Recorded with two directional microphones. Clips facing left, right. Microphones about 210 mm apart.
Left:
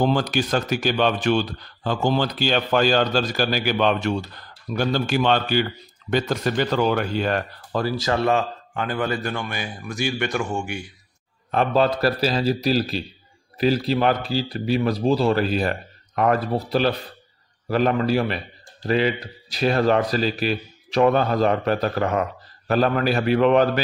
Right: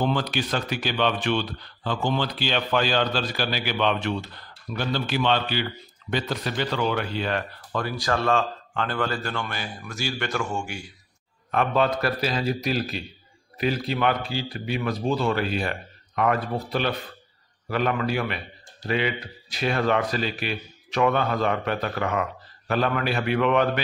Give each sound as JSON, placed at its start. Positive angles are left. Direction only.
{"t": 0.0, "sound": "speech", "side_deg": 45}
{"t": 11.5, "sound": "speech", "side_deg": 35}